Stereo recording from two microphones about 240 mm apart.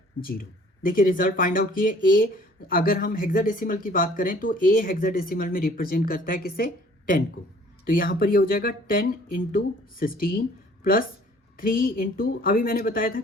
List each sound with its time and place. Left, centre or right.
0.2 s speech: left
7.9 s speech: left
11.5 s speech: left